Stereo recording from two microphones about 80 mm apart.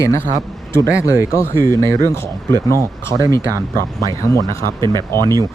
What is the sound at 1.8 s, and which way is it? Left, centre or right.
Speech, left.